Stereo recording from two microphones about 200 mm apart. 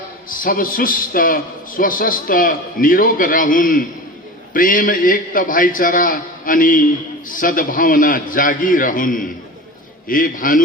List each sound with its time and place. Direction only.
0.3 s a man's voice: 45° left (ahead or behind)